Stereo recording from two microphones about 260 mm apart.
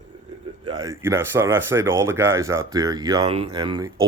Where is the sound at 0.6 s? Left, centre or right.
Centre.